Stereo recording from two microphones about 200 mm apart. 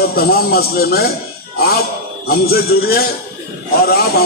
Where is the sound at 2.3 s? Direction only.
50° left (ahead or behind).